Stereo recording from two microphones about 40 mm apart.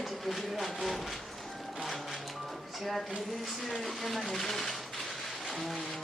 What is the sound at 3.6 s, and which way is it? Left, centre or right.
Speech, centre.